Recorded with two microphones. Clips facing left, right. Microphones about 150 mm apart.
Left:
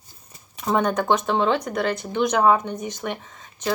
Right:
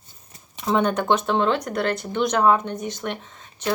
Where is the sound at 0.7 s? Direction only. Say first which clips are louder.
Even; centre (ahead or behind).